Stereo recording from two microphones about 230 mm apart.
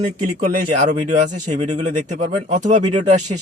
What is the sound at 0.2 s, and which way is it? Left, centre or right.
A man's voice, right.